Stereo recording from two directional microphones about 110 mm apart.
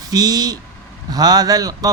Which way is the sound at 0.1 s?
35° right (ahead or behind).